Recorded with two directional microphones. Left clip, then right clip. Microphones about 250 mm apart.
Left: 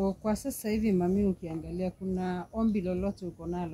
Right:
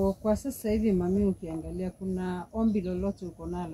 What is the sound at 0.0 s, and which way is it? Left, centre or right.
Speech, left.